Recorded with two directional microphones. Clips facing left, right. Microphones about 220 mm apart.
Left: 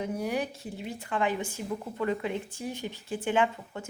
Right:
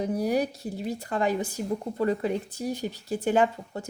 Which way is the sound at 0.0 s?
35° right (ahead or behind).